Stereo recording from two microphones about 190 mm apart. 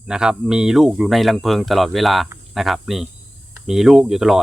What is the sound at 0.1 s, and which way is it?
Speech, 5° right (ahead or behind).